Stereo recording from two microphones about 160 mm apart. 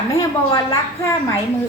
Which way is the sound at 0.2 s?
20° left (ahead or behind).